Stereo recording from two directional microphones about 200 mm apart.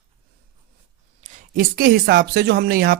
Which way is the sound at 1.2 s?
40° right (ahead or behind).